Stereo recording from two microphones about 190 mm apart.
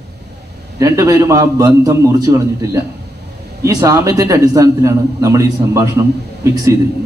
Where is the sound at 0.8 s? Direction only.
15° right (ahead or behind).